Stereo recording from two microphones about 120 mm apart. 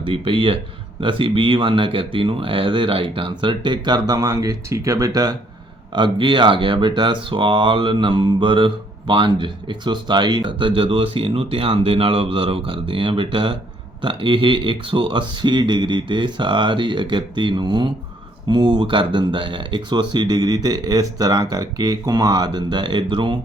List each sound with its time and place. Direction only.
0.0 s speech: 45° right (ahead or behind)
5.9 s speech: 45° right (ahead or behind)